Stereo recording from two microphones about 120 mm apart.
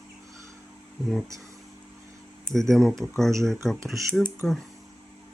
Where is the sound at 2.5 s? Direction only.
Centre (ahead or behind).